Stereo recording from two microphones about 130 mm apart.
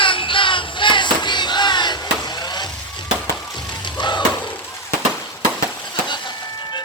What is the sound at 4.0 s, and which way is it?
Music, 35° left (ahead or behind).